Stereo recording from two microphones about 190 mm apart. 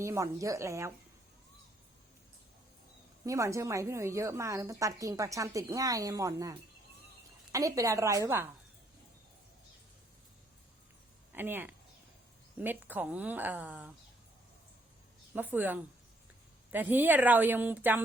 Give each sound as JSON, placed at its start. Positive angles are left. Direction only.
{"t": 0.0, "sound": "a woman's voice", "side_deg": -15}
{"t": 3.2, "sound": "a woman's voice", "side_deg": -15}
{"t": 11.3, "sound": "a woman's voice", "side_deg": -10}
{"t": 15.3, "sound": "a woman's voice", "side_deg": -10}